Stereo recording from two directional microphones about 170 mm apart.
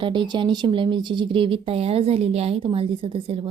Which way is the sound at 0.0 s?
30° right (ahead or behind).